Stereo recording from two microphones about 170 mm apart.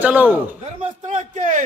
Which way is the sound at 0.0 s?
10° right (ahead or behind).